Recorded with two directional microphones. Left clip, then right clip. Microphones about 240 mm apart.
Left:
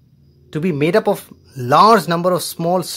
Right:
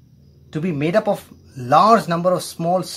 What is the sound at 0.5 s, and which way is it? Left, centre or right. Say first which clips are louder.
Speech: left 3 dB; left.